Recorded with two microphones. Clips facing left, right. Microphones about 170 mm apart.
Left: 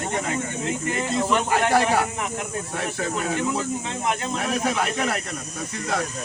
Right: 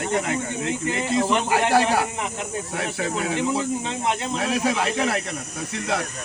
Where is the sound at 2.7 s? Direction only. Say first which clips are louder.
Right 1 dB; 10° right (ahead or behind).